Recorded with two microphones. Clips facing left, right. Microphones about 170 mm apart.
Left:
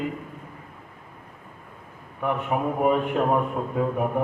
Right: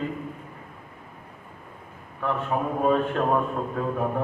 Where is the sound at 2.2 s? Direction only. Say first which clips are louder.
Left 1 dB; 15° left (ahead or behind).